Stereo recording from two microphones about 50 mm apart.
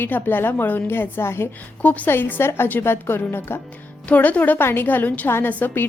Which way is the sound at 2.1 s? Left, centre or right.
Left.